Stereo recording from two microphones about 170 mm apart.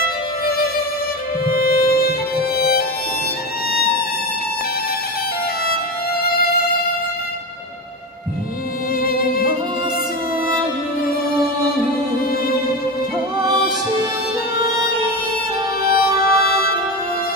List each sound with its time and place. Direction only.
1.4 s music: 60° left (ahead or behind)
15.8 s music: 60° left (ahead or behind)